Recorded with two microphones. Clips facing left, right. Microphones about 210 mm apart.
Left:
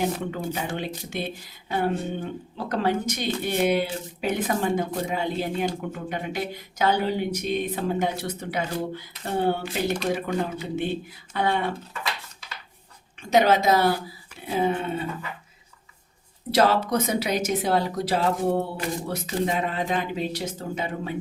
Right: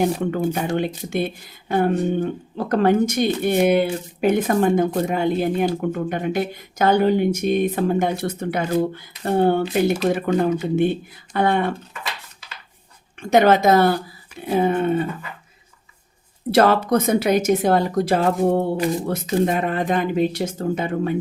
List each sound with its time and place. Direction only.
0.2 s speech: 50° right (ahead or behind)
13.3 s speech: 55° right (ahead or behind)
16.5 s speech: 55° right (ahead or behind)